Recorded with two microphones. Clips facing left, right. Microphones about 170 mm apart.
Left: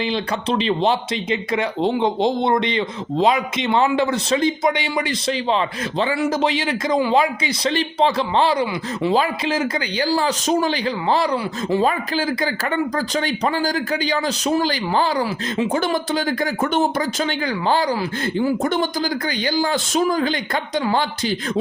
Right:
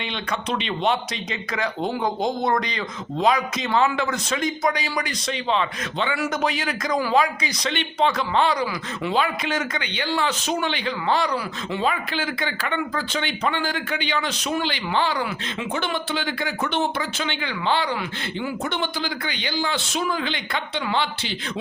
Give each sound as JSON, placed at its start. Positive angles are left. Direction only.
{"t": 0.0, "sound": "a man's voice", "side_deg": 35}